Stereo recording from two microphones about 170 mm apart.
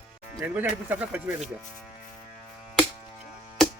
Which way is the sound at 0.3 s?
10° right (ahead or behind).